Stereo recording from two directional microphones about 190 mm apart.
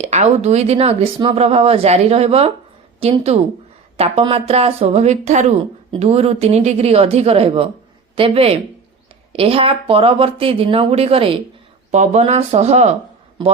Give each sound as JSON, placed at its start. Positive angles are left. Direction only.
{"t": 0.0, "sound": "speech", "side_deg": -35}